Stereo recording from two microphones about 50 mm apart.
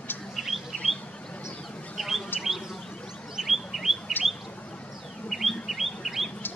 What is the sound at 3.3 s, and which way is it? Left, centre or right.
Chirp, centre.